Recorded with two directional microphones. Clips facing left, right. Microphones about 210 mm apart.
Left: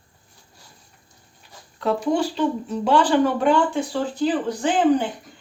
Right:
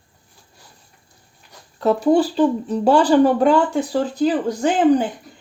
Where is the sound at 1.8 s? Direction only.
40° right (ahead or behind).